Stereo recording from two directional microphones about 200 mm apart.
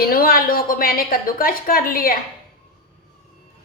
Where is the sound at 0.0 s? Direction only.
45° left (ahead or behind).